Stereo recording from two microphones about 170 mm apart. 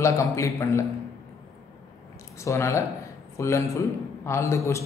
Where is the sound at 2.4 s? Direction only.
15° left (ahead or behind).